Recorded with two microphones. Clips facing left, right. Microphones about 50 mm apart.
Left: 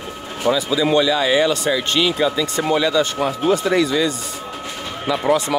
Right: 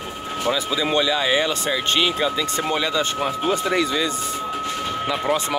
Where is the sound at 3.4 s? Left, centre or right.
Right.